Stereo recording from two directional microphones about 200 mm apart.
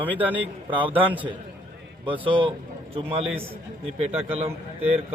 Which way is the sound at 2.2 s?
25° right (ahead or behind).